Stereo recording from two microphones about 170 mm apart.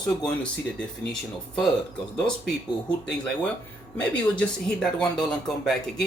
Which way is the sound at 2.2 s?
Centre (ahead or behind).